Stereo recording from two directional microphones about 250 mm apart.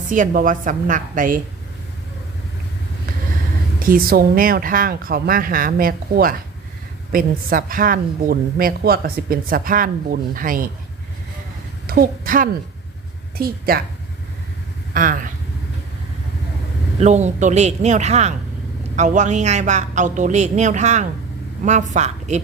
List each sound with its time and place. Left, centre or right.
0.1 s a woman's voice: right
3.8 s a woman's voice: right
11.9 s a woman's voice: right
14.9 s a woman's voice: right
17.0 s a woman's voice: right